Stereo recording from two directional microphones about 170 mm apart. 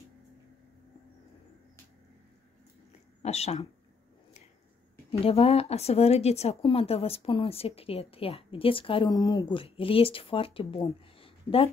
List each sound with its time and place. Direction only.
3.2 s speech: 40° left (ahead or behind)
5.1 s speech: 35° left (ahead or behind)